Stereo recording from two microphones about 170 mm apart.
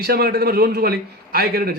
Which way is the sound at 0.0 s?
60° right (ahead or behind).